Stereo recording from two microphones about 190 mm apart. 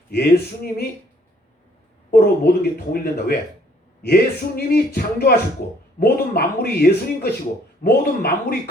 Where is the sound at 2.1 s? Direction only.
55° left (ahead or behind).